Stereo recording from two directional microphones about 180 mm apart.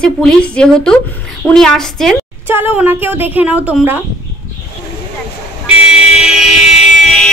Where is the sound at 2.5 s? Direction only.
10° right (ahead or behind).